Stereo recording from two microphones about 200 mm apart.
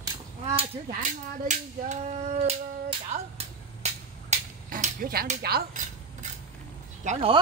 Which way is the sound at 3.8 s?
35° right (ahead or behind).